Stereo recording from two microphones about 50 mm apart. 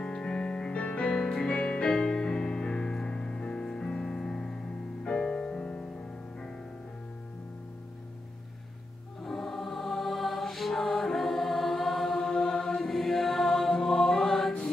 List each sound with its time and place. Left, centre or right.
0.0 s music: centre
9.2 s music: centre